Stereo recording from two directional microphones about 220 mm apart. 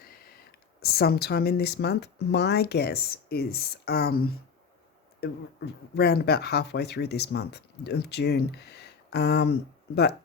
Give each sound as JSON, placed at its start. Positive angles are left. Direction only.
{"t": 0.8, "sound": "speech", "side_deg": 45}